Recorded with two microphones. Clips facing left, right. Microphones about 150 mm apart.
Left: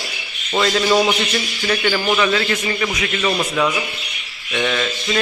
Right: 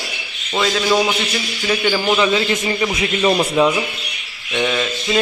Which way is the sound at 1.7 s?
10° right (ahead or behind).